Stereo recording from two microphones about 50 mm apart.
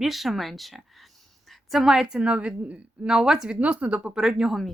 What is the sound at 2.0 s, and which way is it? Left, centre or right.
A woman's voice, right.